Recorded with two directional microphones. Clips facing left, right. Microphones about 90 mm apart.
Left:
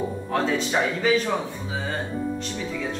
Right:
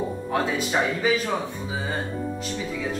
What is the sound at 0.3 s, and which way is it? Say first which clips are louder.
Speech: left 1 dB; 5° right (ahead or behind).